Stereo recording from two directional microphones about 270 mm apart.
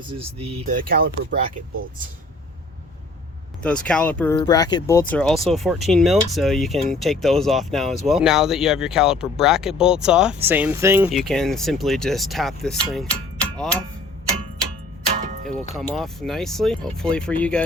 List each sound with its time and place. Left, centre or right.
0.1 s speech: right
3.6 s speech: centre
15.7 s speech: centre